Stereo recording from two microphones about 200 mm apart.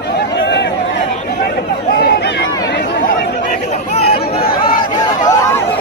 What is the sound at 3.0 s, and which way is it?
Chatter, 45° left (ahead or behind).